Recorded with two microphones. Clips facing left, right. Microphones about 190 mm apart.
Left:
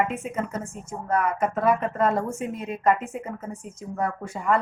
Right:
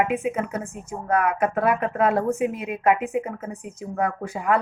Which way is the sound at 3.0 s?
60° right (ahead or behind).